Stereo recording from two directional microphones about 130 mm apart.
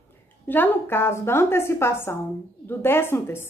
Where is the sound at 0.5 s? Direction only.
15° left (ahead or behind).